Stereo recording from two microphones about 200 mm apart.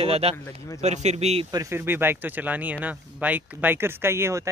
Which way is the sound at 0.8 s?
35° right (ahead or behind).